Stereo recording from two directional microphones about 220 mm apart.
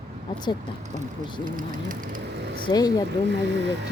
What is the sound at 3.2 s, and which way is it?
Speech, 55° right (ahead or behind).